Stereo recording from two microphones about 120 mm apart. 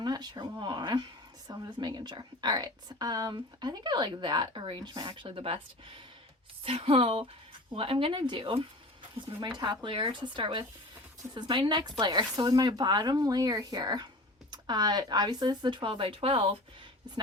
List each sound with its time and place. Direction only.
0.0 s a sound: 35° right (ahead or behind)
0.6 s a woman's voice: 40° right (ahead or behind)
6.7 s a woman's voice: 50° right (ahead or behind)